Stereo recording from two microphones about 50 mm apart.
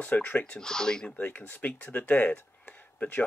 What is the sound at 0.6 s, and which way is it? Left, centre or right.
Speech, centre.